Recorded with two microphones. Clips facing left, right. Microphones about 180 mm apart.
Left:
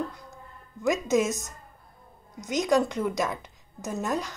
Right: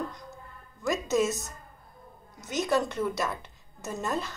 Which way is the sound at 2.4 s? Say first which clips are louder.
Left 3 dB; 15° left (ahead or behind).